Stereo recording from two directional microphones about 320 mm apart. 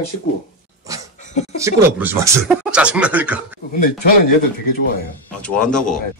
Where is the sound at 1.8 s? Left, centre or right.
Centre.